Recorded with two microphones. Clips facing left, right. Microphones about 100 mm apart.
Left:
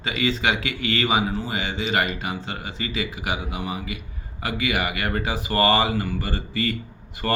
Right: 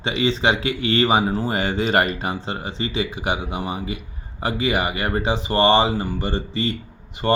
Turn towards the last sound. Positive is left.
turn(degrees=-25)  # may be behind; listen again after turning